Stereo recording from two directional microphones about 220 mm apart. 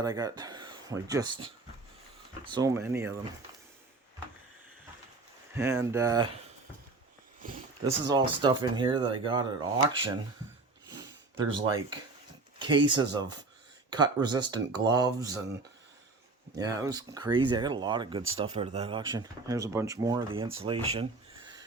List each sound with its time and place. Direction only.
0.0 s speech: 15° right (ahead or behind)
5.5 s speech: 10° right (ahead or behind)
8.0 s speech: 20° right (ahead or behind)
10.8 s a sound: 20° right (ahead or behind)
11.5 s speech: 20° right (ahead or behind)
16.6 s speech: 15° right (ahead or behind)